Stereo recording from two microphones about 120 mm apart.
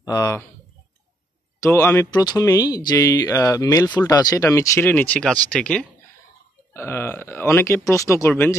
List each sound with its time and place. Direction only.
0.0 s speech: 30° left (ahead or behind)
1.6 s speech: 20° left (ahead or behind)
6.7 s speech: 20° left (ahead or behind)